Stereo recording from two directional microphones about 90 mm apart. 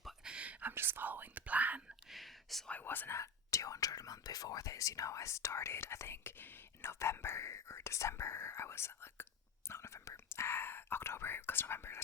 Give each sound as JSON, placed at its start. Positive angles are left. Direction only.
{"t": 0.0, "sound": "whispering", "side_deg": -10}
{"t": 2.0, "sound": "whispering", "side_deg": 0}
{"t": 2.6, "sound": "speech", "side_deg": 20}
{"t": 3.2, "sound": "speech", "side_deg": 35}
{"t": 9.6, "sound": "whispering", "side_deg": 30}